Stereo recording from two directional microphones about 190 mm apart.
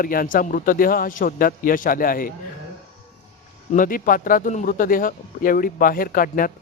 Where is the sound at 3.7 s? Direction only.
45° left (ahead or behind).